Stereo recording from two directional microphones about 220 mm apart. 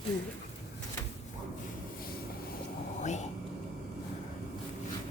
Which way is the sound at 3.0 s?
30° left (ahead or behind).